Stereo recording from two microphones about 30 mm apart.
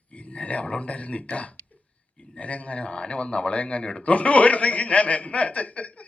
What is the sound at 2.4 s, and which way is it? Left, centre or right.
A man's voice, left.